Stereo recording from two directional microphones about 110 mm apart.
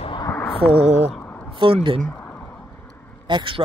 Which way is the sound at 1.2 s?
15° left (ahead or behind).